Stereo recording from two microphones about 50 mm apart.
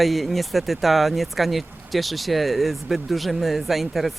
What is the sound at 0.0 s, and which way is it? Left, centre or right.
Speech, centre.